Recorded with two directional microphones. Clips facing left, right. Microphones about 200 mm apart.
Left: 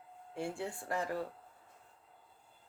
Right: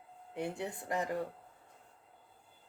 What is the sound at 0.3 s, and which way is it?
Speech, 20° right (ahead or behind).